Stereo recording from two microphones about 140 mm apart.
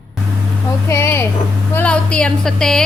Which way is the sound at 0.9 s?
20° left (ahead or behind).